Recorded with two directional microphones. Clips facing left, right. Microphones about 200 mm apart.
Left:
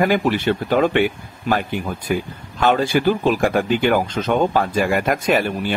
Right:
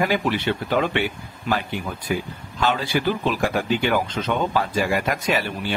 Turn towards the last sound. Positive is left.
turn(degrees=50)  # may be behind; listen again after turning